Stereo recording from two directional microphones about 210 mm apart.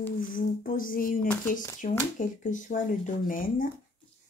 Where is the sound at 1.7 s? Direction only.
40° left (ahead or behind).